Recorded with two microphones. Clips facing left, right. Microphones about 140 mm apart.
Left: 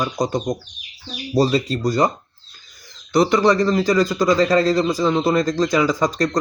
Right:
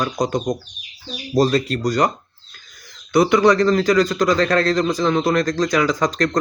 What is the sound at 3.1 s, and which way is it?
A man's voice, centre (ahead or behind).